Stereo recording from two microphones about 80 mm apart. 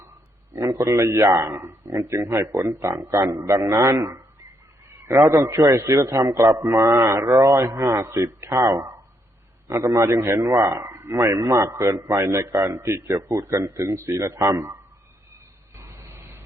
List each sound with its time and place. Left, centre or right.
0.5 s a man's voice: right
4.9 s a sound: right
5.2 s a man's voice: right
15.7 s vehicle: right